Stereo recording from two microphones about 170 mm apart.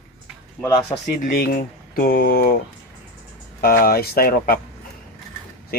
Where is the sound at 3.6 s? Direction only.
60° left (ahead or behind).